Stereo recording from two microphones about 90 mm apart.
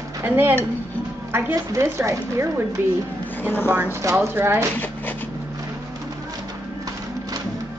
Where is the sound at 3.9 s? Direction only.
30° right (ahead or behind).